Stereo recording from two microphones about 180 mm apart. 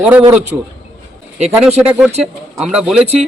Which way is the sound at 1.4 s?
Centre (ahead or behind).